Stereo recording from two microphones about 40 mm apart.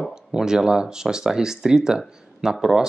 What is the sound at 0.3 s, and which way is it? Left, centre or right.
Speech, centre.